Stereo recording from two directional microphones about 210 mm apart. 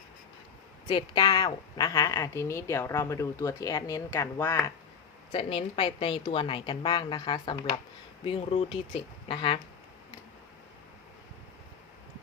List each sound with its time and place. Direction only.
0.9 s a woman's voice: 20° left (ahead or behind)
5.3 s a woman's voice: 25° left (ahead or behind)